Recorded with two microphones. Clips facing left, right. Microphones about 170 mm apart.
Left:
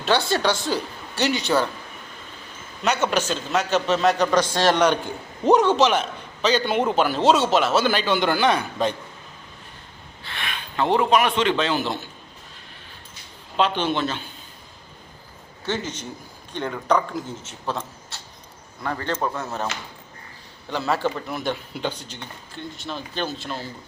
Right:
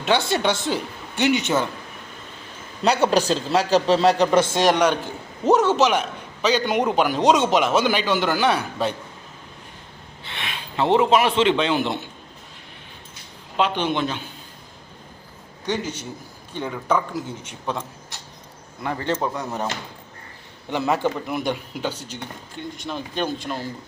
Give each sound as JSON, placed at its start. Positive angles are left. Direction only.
{"t": 0.0, "sound": "a man's voice", "side_deg": -20}
{"t": 2.8, "sound": "a man's voice", "side_deg": -35}
{"t": 4.7, "sound": "a man's voice", "side_deg": -5}
{"t": 10.2, "sound": "a man's voice", "side_deg": -25}
{"t": 13.6, "sound": "a man's voice", "side_deg": -10}
{"t": 15.6, "sound": "a man's voice", "side_deg": -10}
{"t": 18.8, "sound": "a man's voice", "side_deg": -20}
{"t": 20.7, "sound": "a man's voice", "side_deg": -20}